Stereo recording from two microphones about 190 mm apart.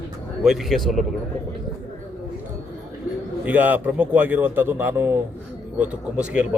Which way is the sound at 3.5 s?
10° right (ahead or behind).